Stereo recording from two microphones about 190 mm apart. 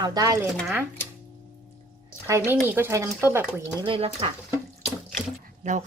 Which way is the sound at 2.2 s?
15° right (ahead or behind).